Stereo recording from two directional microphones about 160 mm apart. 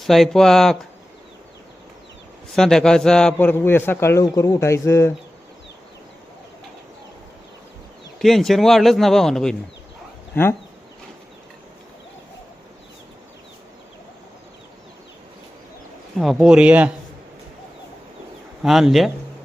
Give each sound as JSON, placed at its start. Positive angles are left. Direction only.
{"t": 0.0, "sound": "speech", "side_deg": 0}
{"t": 2.6, "sound": "a man's voice", "side_deg": 5}
{"t": 8.2, "sound": "speech", "side_deg": 0}
{"t": 16.1, "sound": "speech", "side_deg": 0}
{"t": 18.6, "sound": "speech", "side_deg": 0}